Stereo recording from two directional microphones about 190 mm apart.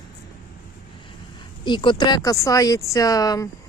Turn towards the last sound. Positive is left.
turn(degrees=20)  # may be behind; listen again after turning